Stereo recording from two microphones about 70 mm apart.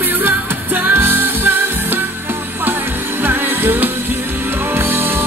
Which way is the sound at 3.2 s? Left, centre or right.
Right.